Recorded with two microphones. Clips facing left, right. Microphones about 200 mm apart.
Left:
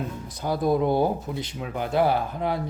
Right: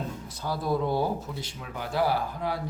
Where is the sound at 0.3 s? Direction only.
15° left (ahead or behind).